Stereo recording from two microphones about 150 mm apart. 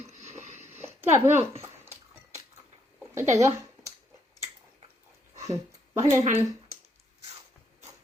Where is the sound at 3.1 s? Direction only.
20° right (ahead or behind).